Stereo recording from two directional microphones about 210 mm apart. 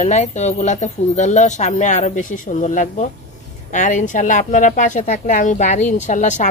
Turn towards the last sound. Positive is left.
turn(degrees=35)  # may be behind; listen again after turning